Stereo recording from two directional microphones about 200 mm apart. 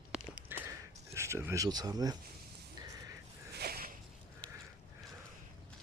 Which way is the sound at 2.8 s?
15° right (ahead or behind).